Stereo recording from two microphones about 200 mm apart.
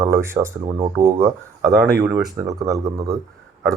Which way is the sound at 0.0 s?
15° right (ahead or behind).